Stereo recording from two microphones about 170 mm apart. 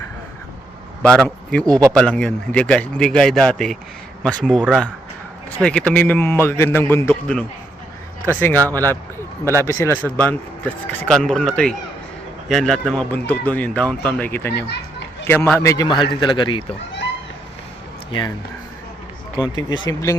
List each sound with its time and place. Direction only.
1.0 s a man's voice: 5° left (ahead or behind)
1.6 s speech: 20° right (ahead or behind)
1.9 s a man's voice: 5° left (ahead or behind)
14.5 s children playing: 80° left
15.3 s a man's voice: 10° left (ahead or behind); by 16.7 s 30° left (ahead or behind)
19.4 s a man's voice: 25° left (ahead or behind)